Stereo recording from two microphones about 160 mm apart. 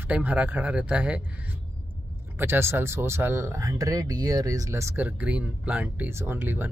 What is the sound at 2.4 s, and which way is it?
Speech, 15° right (ahead or behind).